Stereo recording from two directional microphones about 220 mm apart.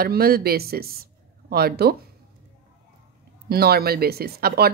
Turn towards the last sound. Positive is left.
turn(degrees=-45)  # may be behind; listen again after turning